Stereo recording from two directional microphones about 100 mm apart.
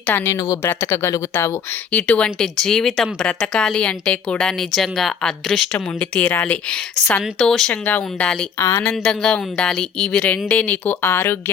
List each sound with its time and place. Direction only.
0.0 s speech: 20° left (ahead or behind)
0.3 s speech: 30° left (ahead or behind)
1.9 s speech: 10° left (ahead or behind)
6.0 s speech: 20° left (ahead or behind)
7.7 s speech: 15° left (ahead or behind)
8.5 s speech: 25° left (ahead or behind)
8.9 s speech: 10° left (ahead or behind); by 11.3 s 25° left (ahead or behind)